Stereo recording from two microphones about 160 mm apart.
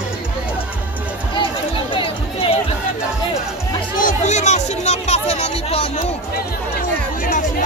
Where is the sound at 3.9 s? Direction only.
50° left (ahead or behind).